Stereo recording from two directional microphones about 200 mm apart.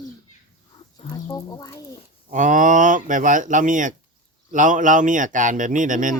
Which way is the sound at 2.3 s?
40° right (ahead or behind).